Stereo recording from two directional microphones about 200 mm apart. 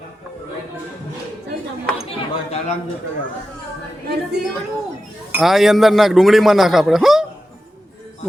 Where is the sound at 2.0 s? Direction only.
30° left (ahead or behind).